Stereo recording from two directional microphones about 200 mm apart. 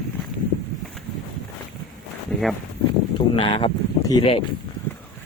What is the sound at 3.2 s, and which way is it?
Speech, 25° left (ahead or behind).